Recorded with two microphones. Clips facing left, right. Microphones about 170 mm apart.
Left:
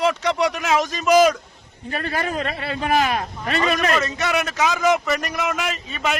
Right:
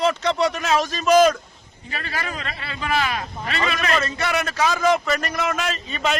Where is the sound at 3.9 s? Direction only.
15° left (ahead or behind).